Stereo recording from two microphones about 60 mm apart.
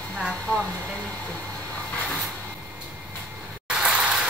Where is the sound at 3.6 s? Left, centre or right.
Centre.